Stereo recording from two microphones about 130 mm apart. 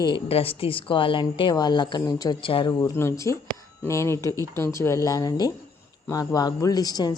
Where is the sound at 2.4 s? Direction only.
40° left (ahead or behind).